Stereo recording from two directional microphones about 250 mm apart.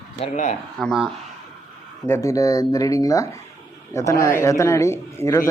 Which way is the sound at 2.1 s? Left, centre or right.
Centre.